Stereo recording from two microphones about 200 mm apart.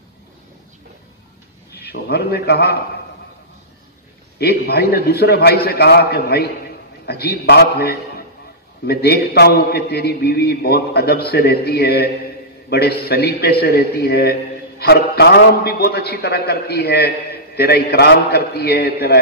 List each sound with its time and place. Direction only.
1.7 s a man's voice: 50° left (ahead or behind)
4.4 s a man's voice: 50° left (ahead or behind)